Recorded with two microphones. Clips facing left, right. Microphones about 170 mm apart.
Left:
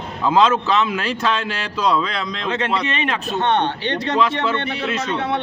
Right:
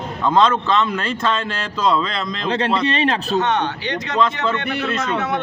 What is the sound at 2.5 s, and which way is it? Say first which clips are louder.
Speech: right 3 dB; 35° right (ahead or behind).